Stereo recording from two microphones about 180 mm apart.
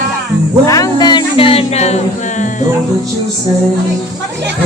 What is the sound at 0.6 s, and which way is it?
Music, 20° left (ahead or behind).